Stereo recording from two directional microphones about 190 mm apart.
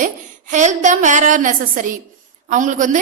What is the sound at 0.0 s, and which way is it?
A man's voice, 40° right (ahead or behind).